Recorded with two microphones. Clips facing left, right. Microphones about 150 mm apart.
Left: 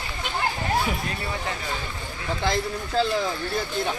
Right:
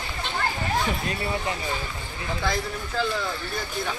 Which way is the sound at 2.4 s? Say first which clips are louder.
Left 3 dB; 20° left (ahead or behind).